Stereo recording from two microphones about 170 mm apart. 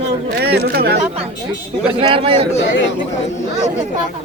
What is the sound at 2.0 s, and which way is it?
Speech, 30° right (ahead or behind).